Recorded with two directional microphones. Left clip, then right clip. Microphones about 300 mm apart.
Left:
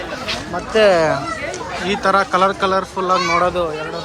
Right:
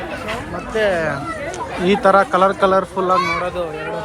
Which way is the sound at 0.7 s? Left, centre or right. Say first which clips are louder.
Left 5 dB; left.